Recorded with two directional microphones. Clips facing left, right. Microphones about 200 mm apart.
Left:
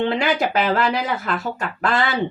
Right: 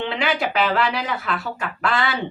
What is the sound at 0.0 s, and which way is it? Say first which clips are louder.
Speech: left 3 dB; 40° left (ahead or behind).